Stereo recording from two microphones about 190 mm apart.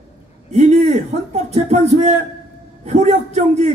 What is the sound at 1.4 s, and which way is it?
A man's voice, 35° right (ahead or behind).